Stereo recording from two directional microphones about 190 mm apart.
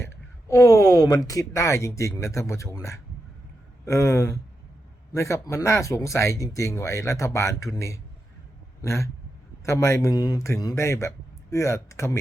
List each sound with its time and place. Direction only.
0.0 s speech: 15° left (ahead or behind)
8.8 s a sound: 15° left (ahead or behind)
9.6 s speech: 15° left (ahead or behind)